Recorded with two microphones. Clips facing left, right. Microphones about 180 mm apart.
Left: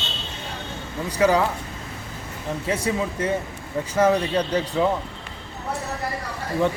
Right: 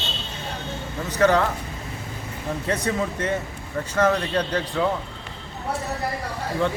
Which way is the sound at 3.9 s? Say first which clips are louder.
Left 2 dB; 10° left (ahead or behind).